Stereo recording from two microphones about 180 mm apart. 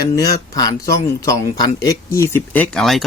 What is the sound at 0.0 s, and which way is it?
Speech, 20° left (ahead or behind).